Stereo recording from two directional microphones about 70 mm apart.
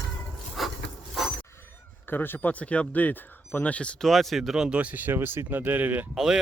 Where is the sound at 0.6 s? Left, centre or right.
Centre.